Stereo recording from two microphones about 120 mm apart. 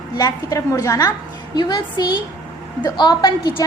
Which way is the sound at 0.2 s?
30° left (ahead or behind).